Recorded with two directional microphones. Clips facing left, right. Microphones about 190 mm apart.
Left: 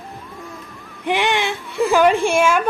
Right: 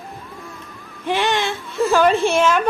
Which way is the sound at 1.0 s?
15° left (ahead or behind).